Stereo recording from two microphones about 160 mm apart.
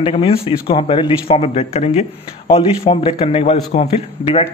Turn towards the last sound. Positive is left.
turn(degrees=40)  # may be behind; listen again after turning